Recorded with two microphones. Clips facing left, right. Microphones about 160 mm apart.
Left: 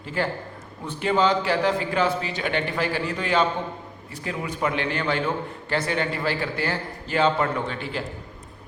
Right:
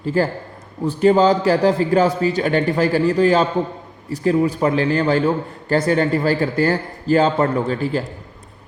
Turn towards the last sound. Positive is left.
turn(degrees=-40)  # may be behind; listen again after turning